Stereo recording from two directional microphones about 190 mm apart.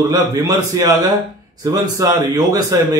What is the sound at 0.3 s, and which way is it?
Speech, 20° right (ahead or behind).